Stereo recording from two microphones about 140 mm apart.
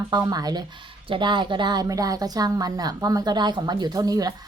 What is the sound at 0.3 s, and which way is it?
Speech, 30° right (ahead or behind).